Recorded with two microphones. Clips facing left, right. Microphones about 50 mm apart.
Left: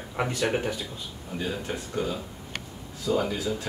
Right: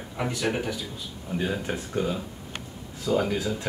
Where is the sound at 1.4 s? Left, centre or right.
Right.